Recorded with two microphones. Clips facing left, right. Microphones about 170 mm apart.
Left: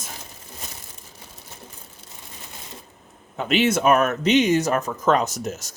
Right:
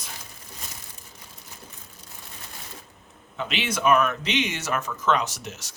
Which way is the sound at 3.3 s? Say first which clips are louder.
Left 9 dB; 45° left (ahead or behind).